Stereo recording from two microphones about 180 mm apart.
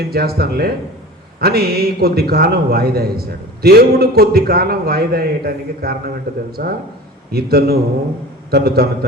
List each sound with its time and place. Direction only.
0.0 s a man's voice: 60° right (ahead or behind)